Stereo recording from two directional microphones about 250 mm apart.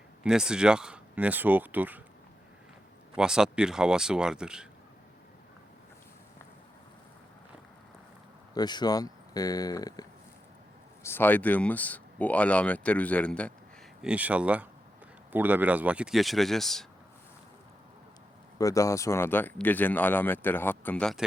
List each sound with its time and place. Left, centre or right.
0.3 s speech: centre
3.2 s speech: centre
8.5 s speech: centre
18.6 s speech: centre